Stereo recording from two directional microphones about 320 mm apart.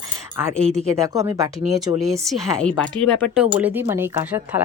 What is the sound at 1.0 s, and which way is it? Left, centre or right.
Speech, centre.